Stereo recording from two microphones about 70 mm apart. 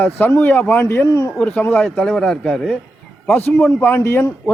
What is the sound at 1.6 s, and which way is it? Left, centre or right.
Speech, left.